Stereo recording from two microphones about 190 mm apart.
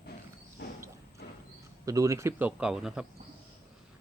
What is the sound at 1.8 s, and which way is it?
Speech, 15° right (ahead or behind).